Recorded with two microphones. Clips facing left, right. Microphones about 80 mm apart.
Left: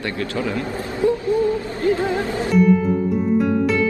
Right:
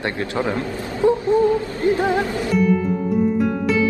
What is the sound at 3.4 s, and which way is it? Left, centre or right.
Music, centre.